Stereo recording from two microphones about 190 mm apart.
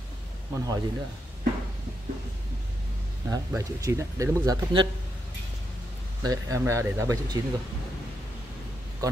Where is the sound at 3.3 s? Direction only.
15° right (ahead or behind).